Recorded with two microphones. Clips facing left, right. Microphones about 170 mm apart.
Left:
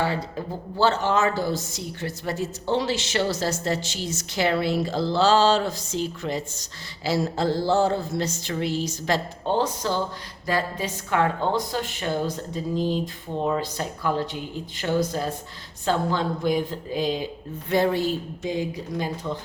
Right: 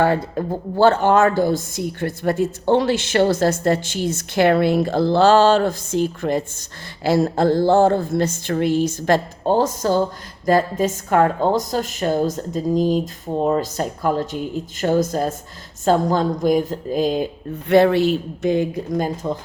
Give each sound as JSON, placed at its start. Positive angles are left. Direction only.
{"t": 0.0, "sound": "a woman's voice", "side_deg": -55}
{"t": 17.7, "sound": "speech", "side_deg": -70}